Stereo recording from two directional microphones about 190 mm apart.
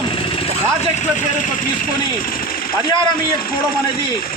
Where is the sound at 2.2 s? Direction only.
50° left (ahead or behind).